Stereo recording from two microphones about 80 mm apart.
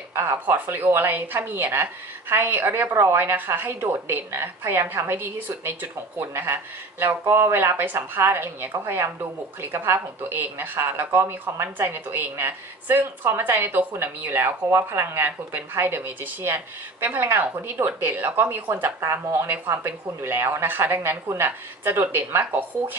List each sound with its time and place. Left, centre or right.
0.1 s a woman's voice: right